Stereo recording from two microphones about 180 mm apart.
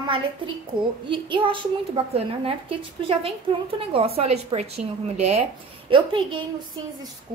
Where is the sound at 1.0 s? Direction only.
25° right (ahead or behind).